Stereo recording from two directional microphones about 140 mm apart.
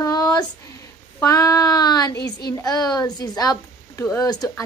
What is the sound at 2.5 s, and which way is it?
A woman's voice, 25° left (ahead or behind).